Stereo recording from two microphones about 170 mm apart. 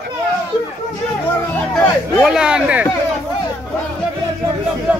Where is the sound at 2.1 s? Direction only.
5° right (ahead or behind).